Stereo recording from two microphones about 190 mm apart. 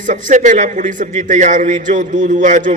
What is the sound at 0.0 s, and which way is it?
A man's voice, 45° right (ahead or behind).